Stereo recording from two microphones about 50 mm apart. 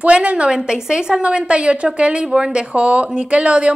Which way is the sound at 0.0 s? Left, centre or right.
Right.